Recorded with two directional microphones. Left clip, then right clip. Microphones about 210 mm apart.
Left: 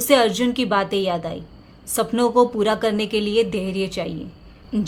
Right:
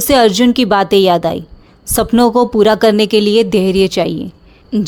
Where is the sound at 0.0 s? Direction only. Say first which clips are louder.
Right 7 dB; 40° right (ahead or behind).